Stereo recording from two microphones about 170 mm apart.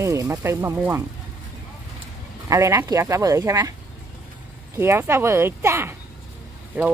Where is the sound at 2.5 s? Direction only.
20° right (ahead or behind).